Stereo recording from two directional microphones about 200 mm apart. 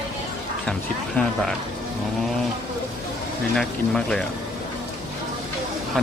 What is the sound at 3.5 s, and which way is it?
Speech, centre (ahead or behind).